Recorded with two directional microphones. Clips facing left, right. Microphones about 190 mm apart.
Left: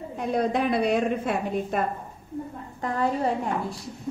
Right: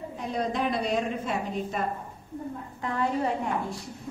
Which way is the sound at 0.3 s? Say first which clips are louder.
Left 5 dB; 60° left (ahead or behind).